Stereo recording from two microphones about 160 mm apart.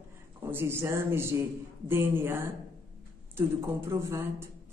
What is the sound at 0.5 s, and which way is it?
Speech, 15° right (ahead or behind).